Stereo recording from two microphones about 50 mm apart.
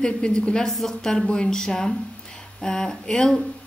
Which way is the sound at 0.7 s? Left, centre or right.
Centre.